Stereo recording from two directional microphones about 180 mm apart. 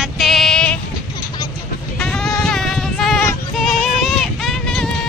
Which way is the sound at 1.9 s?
5° left (ahead or behind).